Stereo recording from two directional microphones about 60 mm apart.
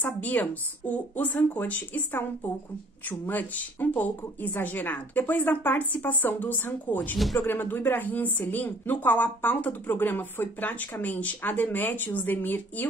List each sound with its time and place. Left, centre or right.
0.0 s a woman's voice: left